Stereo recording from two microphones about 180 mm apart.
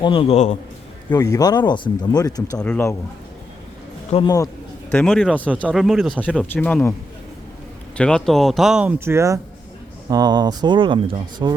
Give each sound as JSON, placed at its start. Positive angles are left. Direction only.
{"t": 0.0, "sound": "a man's voice", "side_deg": 30}
{"t": 1.1, "sound": "speech", "side_deg": 20}
{"t": 2.6, "sound": "speech", "side_deg": 10}
{"t": 4.1, "sound": "speech", "side_deg": 25}
{"t": 4.9, "sound": "speech", "side_deg": 5}
{"t": 7.9, "sound": "speech", "side_deg": 5}